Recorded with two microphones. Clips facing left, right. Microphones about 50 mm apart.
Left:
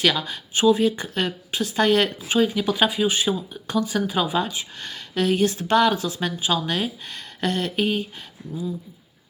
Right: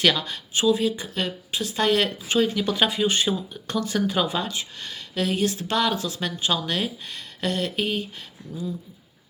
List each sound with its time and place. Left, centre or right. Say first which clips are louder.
0.0 s speech: even; centre
0.5 s speech: left 3 dB; left
2.2 s speech: left 2 dB; centre
4.8 s speech: left 4 dB; left
6.1 s speech: left 2 dB; centre
7.1 s speech: left 2 dB; left